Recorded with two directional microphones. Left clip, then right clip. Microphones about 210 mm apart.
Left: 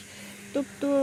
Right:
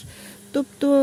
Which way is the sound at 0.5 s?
55° right (ahead or behind).